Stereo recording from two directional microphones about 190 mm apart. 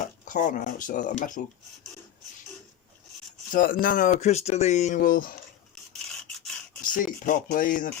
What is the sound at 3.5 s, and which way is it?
Speech, 45° left (ahead or behind).